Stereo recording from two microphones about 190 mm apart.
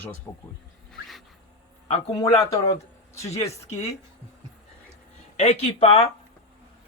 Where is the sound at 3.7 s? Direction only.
35° left (ahead or behind).